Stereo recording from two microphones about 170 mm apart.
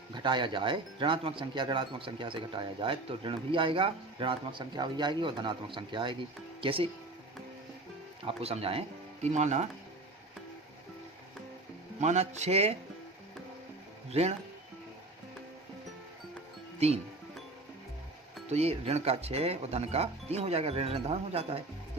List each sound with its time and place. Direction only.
0.1 s speech: 25° right (ahead or behind)
8.2 s speech: 35° right (ahead or behind)
11.9 s speech: 40° right (ahead or behind)
14.1 s speech: 40° right (ahead or behind)
16.8 s speech: 40° right (ahead or behind)
18.4 s speech: 40° right (ahead or behind)